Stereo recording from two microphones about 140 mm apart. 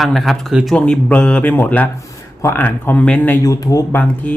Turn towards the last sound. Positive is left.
turn(degrees=10)  # may be behind; listen again after turning